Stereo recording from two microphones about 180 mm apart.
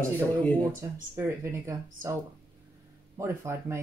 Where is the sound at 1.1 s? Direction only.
15° right (ahead or behind).